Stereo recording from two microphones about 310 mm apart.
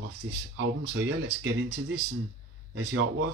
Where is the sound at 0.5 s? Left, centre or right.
Right.